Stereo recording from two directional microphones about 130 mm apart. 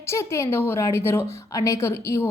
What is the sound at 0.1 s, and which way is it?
A woman's voice, 20° left (ahead or behind).